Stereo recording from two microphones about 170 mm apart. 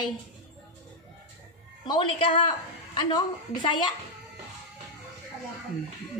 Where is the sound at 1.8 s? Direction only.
25° left (ahead or behind).